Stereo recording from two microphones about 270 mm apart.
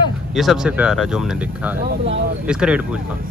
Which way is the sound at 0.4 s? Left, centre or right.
Centre.